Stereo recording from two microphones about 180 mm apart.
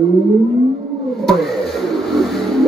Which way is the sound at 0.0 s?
Centre (ahead or behind).